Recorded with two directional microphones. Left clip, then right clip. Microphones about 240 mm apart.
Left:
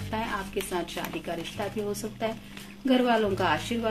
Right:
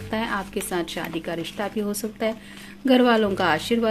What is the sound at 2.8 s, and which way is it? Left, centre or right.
A woman's voice, right.